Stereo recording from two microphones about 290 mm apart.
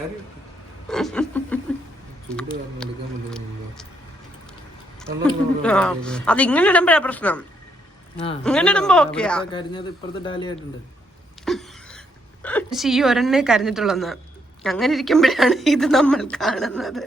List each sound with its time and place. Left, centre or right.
0.9 s a sound: centre
2.3 s a woman's voice: centre
4.9 s a woman's voice: centre
8.4 s a woman's voice: centre
9.4 s speech: centre
11.4 s a woman's voice: centre